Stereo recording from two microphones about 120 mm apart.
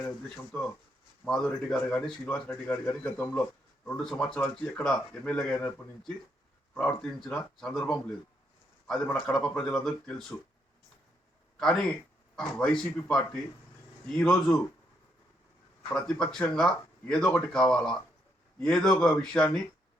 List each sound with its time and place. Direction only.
0.0 s speech: 10° left (ahead or behind)
11.5 s a man's voice: 5° left (ahead or behind)
15.9 s speech: 5° left (ahead or behind)